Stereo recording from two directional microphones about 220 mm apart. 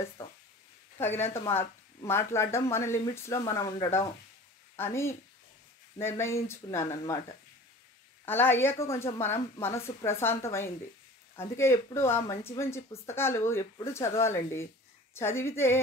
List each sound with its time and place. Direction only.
0.2 s a sound: 10° left (ahead or behind)
0.9 s speech: 10° left (ahead or behind)
8.3 s speech: 10° left (ahead or behind)